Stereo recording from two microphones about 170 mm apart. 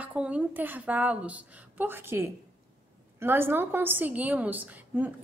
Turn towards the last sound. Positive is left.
turn(degrees=-10)  # may be behind; listen again after turning